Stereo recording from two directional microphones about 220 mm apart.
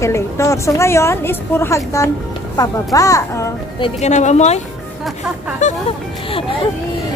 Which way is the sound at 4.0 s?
30° left (ahead or behind).